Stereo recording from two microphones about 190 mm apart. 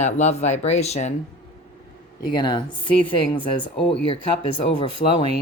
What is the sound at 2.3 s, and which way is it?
Speech, 25° left (ahead or behind).